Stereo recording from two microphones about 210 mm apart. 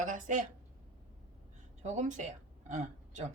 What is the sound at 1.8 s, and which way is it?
Speech, 35° right (ahead or behind).